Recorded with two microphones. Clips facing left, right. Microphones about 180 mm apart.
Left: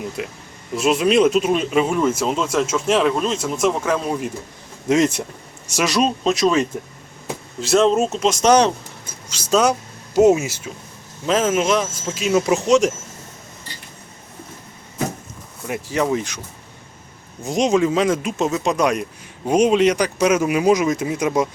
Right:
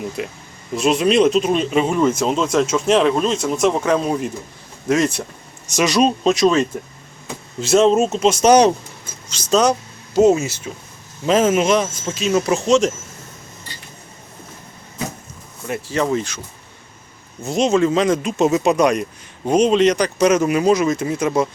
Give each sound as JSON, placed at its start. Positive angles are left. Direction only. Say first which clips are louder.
{"t": 0.2, "sound": "speech", "louder": "right 2 dB", "side_deg": 0}
{"t": 4.9, "sound": "speech", "louder": "left 1 dB", "side_deg": 20}
{"t": 5.7, "sound": "speech", "louder": "right 3 dB", "side_deg": 0}
{"t": 9.3, "sound": "speech", "louder": "right 1 dB", "side_deg": 10}
{"t": 11.3, "sound": "speech", "louder": "right 3 dB", "side_deg": 0}
{"t": 15.6, "sound": "speech", "louder": "even", "side_deg": 15}
{"t": 17.4, "sound": "speech", "louder": "right 1 dB", "side_deg": 15}
{"t": 18.4, "sound": "speech", "louder": "right 4 dB", "side_deg": -5}